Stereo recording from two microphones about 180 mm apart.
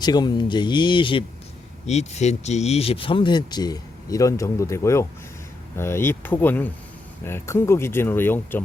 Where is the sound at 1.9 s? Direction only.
40° left (ahead or behind).